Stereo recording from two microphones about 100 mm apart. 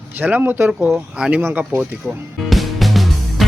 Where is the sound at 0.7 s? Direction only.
10° right (ahead or behind).